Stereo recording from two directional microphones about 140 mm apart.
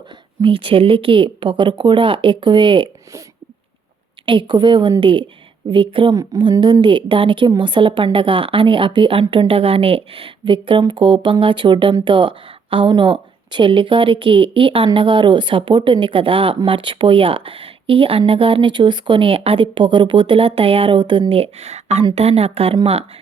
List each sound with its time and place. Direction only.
0.4 s speech: 40° right (ahead or behind)
4.3 s speech: 35° right (ahead or behind)
6.1 s a woman's voice: 25° right (ahead or behind); by 22.8 s 45° right (ahead or behind)